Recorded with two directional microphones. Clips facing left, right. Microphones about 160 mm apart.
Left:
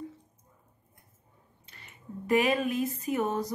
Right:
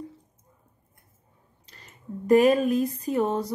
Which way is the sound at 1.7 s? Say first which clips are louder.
Right 6 dB; 40° right (ahead or behind).